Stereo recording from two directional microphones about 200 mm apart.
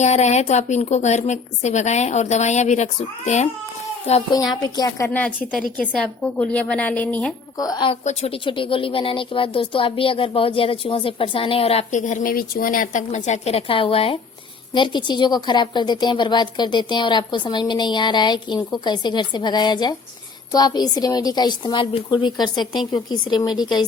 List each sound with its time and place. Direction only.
0.0 s a woman's voice: 35° left (ahead or behind)
4.3 s a woman's voice: 20° left (ahead or behind)
7.6 s a woman's voice: 20° left (ahead or behind)